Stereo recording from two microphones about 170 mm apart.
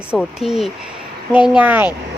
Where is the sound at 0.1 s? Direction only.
5° right (ahead or behind).